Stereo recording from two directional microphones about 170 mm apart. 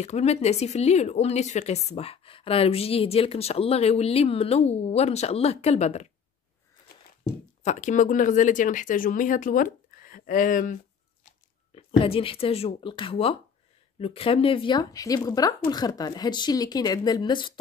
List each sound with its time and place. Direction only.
0.0 s a woman's voice: 40° left (ahead or behind)
7.6 s speech: 45° left (ahead or behind)
11.7 s a woman's voice: 35° left (ahead or behind)